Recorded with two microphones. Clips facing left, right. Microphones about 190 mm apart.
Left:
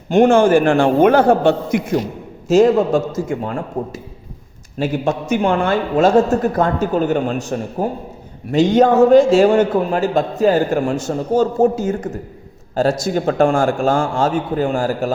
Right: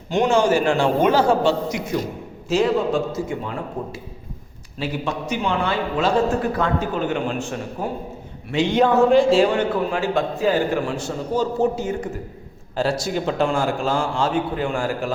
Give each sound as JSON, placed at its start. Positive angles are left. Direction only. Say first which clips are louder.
{"t": 0.1, "sound": "a man's voice", "louder": "left 6 dB", "side_deg": 55}